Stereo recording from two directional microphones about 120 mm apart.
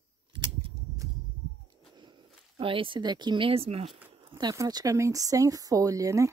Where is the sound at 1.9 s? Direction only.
40° right (ahead or behind).